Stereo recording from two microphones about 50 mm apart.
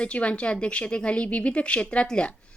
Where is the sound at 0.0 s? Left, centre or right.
Left.